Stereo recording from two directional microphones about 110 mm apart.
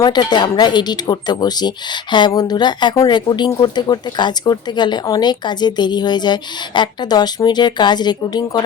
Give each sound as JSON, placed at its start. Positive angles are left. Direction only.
{"t": 0.0, "sound": "speech", "side_deg": 40}